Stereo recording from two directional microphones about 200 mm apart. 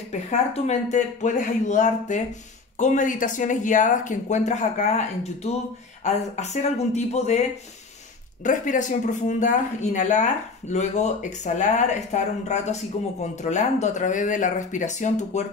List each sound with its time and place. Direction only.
0.1 s speech: 35° left (ahead or behind)
8.5 s speech: 40° left (ahead or behind)